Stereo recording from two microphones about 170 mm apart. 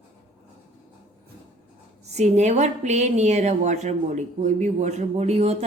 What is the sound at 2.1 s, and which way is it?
A woman's voice, 40° right (ahead or behind).